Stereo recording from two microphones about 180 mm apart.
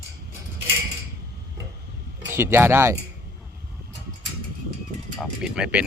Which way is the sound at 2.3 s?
15° right (ahead or behind).